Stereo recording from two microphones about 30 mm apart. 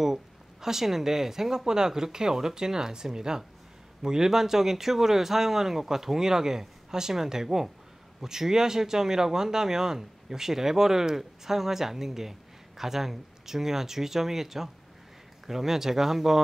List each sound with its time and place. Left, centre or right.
0.0 s speech: centre